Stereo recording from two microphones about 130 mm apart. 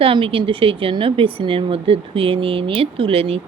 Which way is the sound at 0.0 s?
45° right (ahead or behind).